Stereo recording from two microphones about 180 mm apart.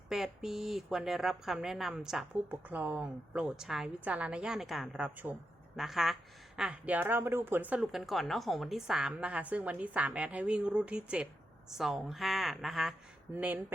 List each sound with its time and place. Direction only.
0.1 s speech: centre (ahead or behind)